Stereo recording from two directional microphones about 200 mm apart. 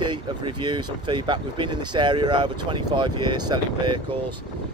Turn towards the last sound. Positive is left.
turn(degrees=-20)  # may be behind; listen again after turning